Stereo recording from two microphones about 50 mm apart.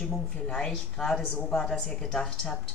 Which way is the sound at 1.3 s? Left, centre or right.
Centre.